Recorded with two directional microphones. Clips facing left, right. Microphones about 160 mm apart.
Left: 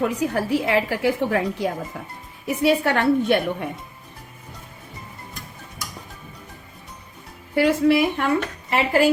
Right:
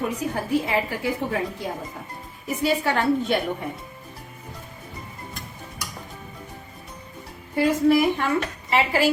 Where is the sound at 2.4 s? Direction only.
65° left (ahead or behind).